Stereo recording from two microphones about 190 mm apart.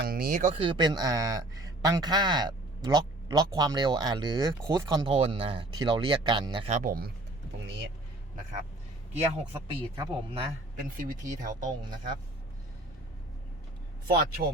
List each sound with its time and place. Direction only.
0.0 s a sound: 50° right (ahead or behind)
0.6 s a man's voice: 25° right (ahead or behind); by 7.1 s 50° right (ahead or behind)
9.1 s a man's voice: 35° right (ahead or behind)
11.3 s speech: 45° right (ahead or behind)
14.1 s speech: 50° right (ahead or behind)